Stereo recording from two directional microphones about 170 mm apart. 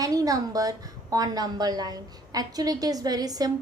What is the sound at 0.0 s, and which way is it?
A woman's voice, 20° right (ahead or behind).